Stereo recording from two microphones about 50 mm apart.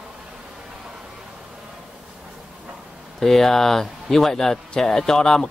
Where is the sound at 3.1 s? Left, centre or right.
Centre.